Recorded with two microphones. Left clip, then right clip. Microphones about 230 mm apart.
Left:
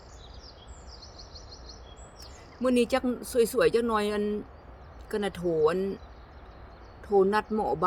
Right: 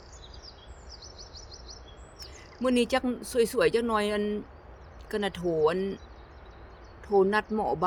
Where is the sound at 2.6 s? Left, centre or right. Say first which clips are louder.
Left 1 dB; centre.